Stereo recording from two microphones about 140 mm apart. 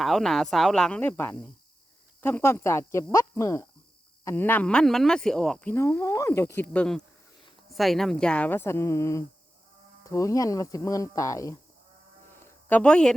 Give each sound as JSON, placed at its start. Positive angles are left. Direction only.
{"t": 0.0, "sound": "a woman's voice", "side_deg": 0}
{"t": 12.6, "sound": "speech", "side_deg": 10}